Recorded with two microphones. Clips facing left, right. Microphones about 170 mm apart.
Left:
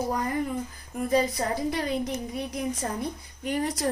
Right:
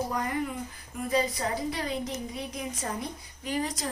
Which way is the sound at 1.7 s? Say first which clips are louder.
Left 4 dB; 55° left (ahead or behind).